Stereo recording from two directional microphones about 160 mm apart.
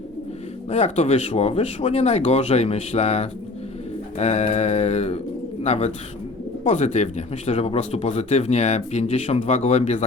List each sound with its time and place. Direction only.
0.7 s speech: 40° left (ahead or behind)